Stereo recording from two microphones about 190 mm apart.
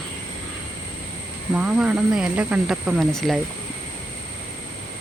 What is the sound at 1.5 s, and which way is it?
Speech, 5° right (ahead or behind).